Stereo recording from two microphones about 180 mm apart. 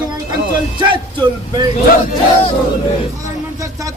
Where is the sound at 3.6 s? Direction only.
20° right (ahead or behind).